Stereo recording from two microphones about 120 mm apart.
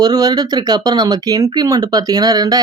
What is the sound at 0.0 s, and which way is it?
Speech, 35° right (ahead or behind).